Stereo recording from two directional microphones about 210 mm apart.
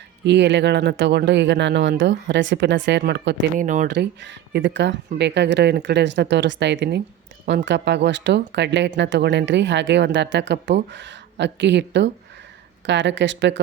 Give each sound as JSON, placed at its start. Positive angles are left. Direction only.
{"t": 0.3, "sound": "speech", "side_deg": -55}
{"t": 3.6, "sound": "speech", "side_deg": -35}
{"t": 3.8, "sound": "speech", "side_deg": -55}